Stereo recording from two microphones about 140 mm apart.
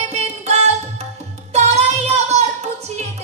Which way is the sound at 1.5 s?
50° right (ahead or behind).